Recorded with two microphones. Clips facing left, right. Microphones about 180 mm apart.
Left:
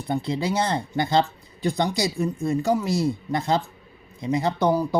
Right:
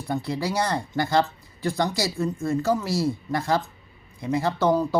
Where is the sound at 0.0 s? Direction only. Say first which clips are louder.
Left 2 dB; 20° left (ahead or behind).